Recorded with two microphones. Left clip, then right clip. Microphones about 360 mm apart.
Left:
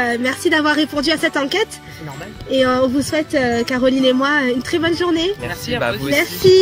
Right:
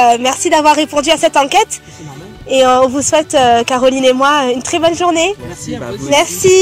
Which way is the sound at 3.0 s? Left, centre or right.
Centre.